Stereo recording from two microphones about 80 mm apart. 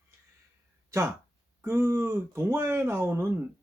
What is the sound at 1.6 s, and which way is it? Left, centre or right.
Speech, right.